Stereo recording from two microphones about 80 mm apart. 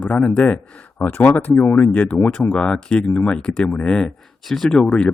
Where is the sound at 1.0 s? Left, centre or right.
Left.